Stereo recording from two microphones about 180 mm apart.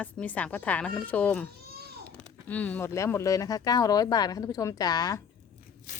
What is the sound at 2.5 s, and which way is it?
Speech, 10° left (ahead or behind).